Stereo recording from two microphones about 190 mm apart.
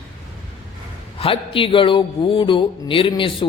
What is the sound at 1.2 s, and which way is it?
Speech, 30° left (ahead or behind).